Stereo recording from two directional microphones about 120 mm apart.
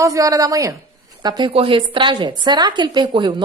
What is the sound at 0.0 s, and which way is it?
A woman's voice, 25° right (ahead or behind).